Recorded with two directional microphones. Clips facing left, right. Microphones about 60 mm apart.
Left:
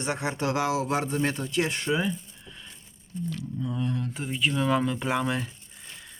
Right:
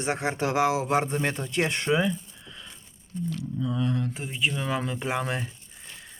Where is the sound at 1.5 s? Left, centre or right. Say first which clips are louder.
Right 1 dB; right.